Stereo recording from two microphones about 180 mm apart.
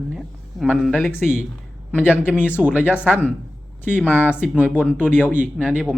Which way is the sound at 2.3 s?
10° left (ahead or behind).